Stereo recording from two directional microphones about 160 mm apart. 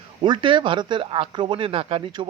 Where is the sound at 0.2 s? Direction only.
30° right (ahead or behind).